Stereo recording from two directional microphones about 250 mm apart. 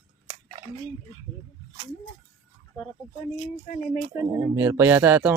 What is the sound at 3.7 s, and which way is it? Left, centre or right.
Speech, left.